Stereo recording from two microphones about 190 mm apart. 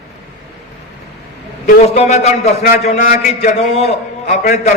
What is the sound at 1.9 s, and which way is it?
A man's voice, 35° left (ahead or behind).